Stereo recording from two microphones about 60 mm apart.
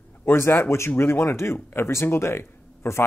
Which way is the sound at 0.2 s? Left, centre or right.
Left.